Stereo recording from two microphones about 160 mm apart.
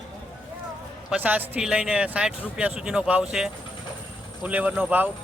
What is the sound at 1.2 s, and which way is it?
Speech, 10° right (ahead or behind).